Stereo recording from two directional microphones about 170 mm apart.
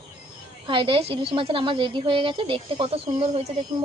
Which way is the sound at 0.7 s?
30° right (ahead or behind).